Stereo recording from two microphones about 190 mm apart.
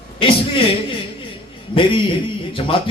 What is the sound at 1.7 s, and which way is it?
A man's voice, 30° left (ahead or behind).